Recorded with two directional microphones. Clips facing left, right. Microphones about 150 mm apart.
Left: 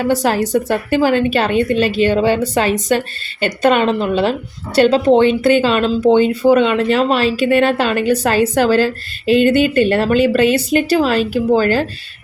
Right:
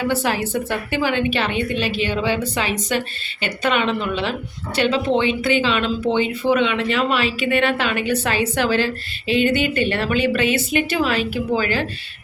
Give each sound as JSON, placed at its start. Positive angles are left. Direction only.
{"t": 0.1, "sound": "a woman's voice", "side_deg": 40}